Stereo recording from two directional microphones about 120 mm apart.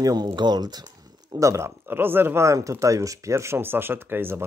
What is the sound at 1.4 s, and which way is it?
Speech, 25° right (ahead or behind).